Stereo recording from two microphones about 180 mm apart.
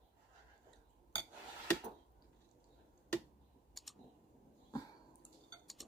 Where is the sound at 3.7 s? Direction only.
Centre (ahead or behind).